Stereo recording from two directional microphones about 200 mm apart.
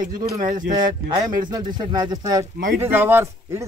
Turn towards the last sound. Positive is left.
turn(degrees=-10)  # may be behind; listen again after turning